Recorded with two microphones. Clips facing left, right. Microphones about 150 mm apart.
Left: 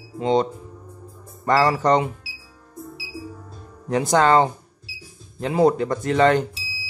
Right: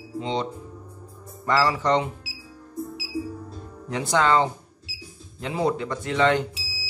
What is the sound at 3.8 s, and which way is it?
Speech, 45° left (ahead or behind).